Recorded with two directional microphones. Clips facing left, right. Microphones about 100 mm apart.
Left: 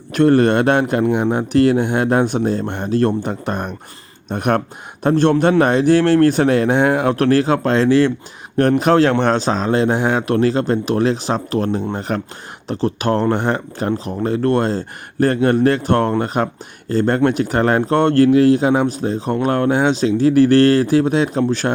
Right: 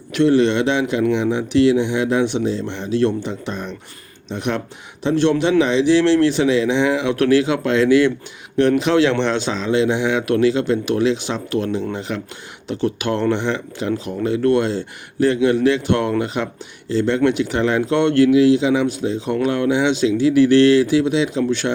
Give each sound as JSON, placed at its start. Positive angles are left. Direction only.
{"t": 0.1, "sound": "speech", "side_deg": 45}
{"t": 8.5, "sound": "speech", "side_deg": 45}